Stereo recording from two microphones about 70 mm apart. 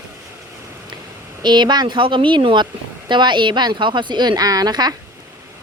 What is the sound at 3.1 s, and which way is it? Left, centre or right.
A woman's voice, right.